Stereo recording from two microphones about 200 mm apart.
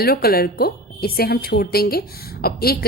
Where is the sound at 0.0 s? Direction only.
50° left (ahead or behind).